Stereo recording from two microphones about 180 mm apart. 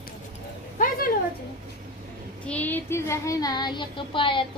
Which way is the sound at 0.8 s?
55° left (ahead or behind).